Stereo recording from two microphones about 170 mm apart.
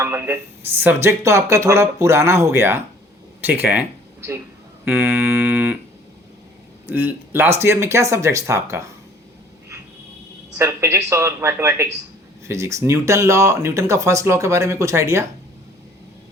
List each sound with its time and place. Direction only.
0.0 s speech: 15° right (ahead or behind)
4.9 s a sound: 10° right (ahead or behind)
6.8 s speech: 10° right (ahead or behind)
10.6 s speech: 15° right (ahead or behind)